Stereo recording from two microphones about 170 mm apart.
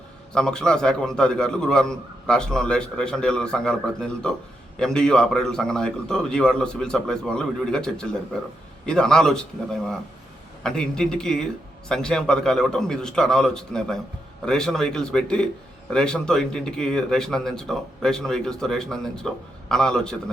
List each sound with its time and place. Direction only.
0.3 s speech: 5° left (ahead or behind)
10.6 s speech: 5° left (ahead or behind)